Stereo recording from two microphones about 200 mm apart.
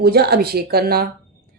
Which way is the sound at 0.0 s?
50° right (ahead or behind).